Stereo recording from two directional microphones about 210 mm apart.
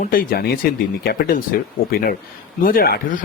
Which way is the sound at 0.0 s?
40° left (ahead or behind).